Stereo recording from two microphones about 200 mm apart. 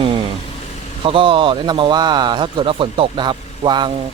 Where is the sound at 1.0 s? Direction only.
25° right (ahead or behind).